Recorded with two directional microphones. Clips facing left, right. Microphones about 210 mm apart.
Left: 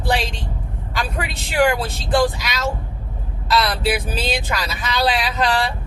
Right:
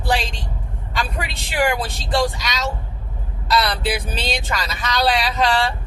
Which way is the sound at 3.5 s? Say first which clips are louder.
Left 1 dB; centre (ahead or behind).